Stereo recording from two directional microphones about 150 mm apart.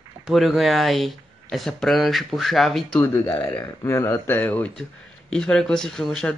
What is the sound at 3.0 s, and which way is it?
Speech, 15° left (ahead or behind).